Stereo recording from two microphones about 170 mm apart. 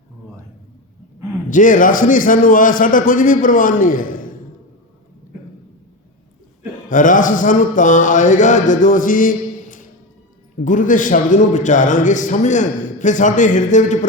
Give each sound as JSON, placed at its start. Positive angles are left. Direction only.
{"t": 1.5, "sound": "a man's voice", "side_deg": 50}
{"t": 6.8, "sound": "a man's voice", "side_deg": 50}